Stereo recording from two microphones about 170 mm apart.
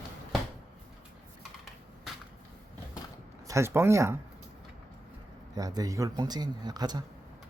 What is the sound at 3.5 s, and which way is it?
Speech, 15° right (ahead or behind).